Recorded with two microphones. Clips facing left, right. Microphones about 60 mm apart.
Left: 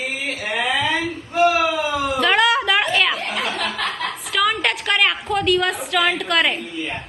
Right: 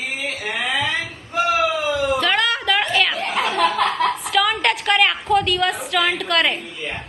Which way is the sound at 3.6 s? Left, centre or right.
Right.